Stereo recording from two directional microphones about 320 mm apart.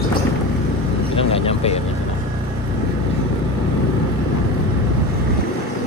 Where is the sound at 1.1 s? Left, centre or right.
Centre.